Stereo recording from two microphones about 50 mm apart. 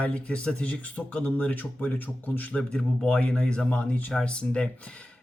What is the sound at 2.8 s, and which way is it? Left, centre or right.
Speech, left.